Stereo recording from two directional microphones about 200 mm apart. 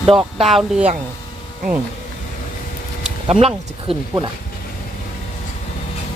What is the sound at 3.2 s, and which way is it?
Speech, 30° right (ahead or behind).